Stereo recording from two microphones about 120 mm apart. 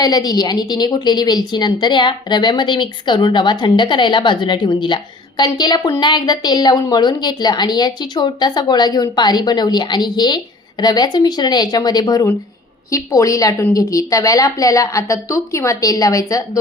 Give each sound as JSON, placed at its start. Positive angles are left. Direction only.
{"t": 0.0, "sound": "a woman's voice", "side_deg": 35}